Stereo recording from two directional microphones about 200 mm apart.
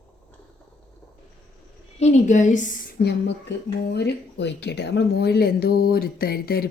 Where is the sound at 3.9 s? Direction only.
55° left (ahead or behind).